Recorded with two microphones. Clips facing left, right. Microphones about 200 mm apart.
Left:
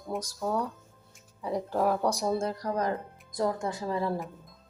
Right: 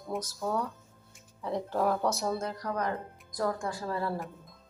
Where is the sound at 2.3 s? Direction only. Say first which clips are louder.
Left 4 dB; 30° left (ahead or behind).